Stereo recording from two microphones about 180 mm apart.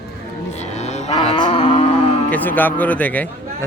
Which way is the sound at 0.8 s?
40° left (ahead or behind).